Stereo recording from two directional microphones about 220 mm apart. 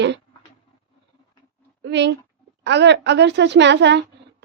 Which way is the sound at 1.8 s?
55° right (ahead or behind).